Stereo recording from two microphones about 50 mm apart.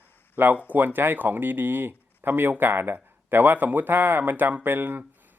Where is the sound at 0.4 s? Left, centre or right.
Right.